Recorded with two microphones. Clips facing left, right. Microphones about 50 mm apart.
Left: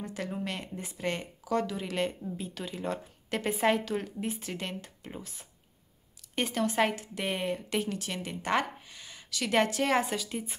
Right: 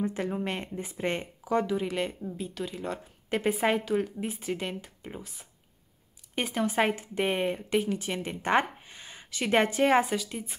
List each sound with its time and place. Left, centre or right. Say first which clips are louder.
0.0 s speech: right 5 dB; right; by 3.0 s centre
3.3 s a woman's voice: right 1 dB; centre
6.3 s speech: right 1 dB; centre
10.0 s speech: right 2 dB; centre